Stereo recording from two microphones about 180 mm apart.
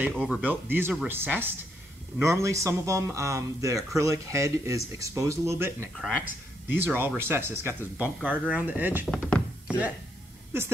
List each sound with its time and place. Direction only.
0.1 s speech: 5° left (ahead or behind)
0.4 s speech: 10° right (ahead or behind)
9.0 s thunk: 5° left (ahead or behind)